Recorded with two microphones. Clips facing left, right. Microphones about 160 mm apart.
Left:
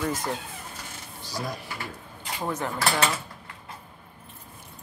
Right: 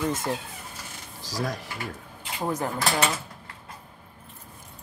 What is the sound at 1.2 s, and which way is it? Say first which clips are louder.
Speech: right 3 dB; 90° right.